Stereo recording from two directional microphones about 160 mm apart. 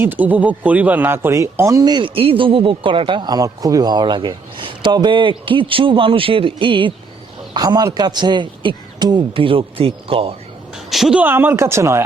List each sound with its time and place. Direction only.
0.0 s speech: 10° right (ahead or behind); by 10.3 s 35° right (ahead or behind)
10.8 s speech: centre (ahead or behind)